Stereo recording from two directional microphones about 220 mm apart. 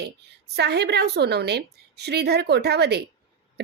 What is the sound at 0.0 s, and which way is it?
A woman's voice, 50° right (ahead or behind).